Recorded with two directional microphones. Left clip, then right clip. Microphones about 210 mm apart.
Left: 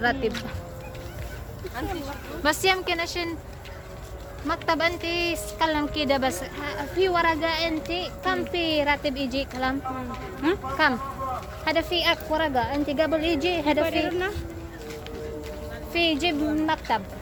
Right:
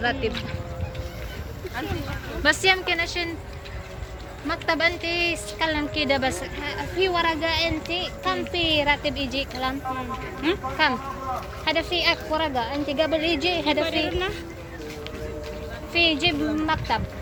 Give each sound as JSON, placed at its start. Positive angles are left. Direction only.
{"t": 0.0, "sound": "a woman's voice", "side_deg": 25}
{"t": 2.4, "sound": "a woman's voice", "side_deg": 15}
{"t": 4.4, "sound": "a woman's voice", "side_deg": 15}
{"t": 15.9, "sound": "a woman's voice", "side_deg": 20}